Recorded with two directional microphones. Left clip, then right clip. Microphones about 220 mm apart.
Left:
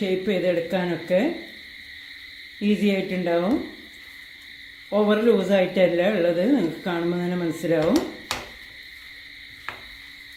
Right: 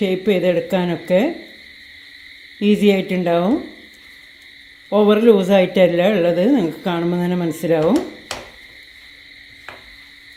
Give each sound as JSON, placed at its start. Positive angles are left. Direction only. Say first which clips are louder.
{"t": 0.0, "sound": "speech", "louder": "right 6 dB", "side_deg": -40}
{"t": 2.6, "sound": "speech", "louder": "right 8 dB", "side_deg": -40}
{"t": 4.9, "sound": "speech", "louder": "right 7 dB", "side_deg": -35}